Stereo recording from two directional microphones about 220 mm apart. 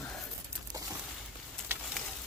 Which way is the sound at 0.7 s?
15° right (ahead or behind).